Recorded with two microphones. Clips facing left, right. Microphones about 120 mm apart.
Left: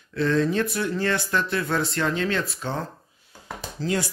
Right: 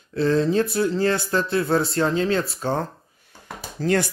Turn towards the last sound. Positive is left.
turn(degrees=-60)  # may be behind; listen again after turning